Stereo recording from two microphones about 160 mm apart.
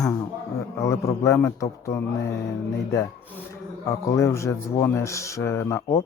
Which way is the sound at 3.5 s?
20° left (ahead or behind).